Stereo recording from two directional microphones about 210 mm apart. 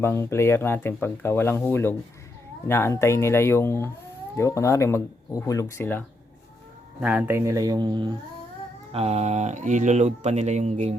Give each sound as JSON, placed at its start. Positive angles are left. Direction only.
{"t": 0.0, "sound": "speech", "side_deg": 10}
{"t": 7.0, "sound": "a man's voice", "side_deg": -10}